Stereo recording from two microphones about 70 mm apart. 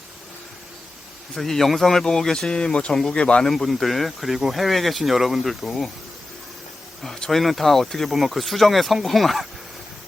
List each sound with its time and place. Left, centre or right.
1.4 s speech: centre
3.4 s speech: centre
7.0 s speech: centre